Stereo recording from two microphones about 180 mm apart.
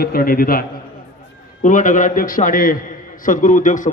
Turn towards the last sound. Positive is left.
turn(degrees=45)  # may be behind; listen again after turning